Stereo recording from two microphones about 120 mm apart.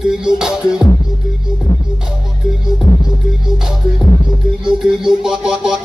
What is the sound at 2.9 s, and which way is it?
Music, 35° left (ahead or behind).